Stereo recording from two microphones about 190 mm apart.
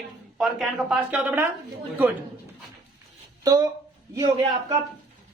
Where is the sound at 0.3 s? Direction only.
Centre (ahead or behind).